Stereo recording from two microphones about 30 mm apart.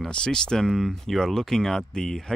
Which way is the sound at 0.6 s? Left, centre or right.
Centre.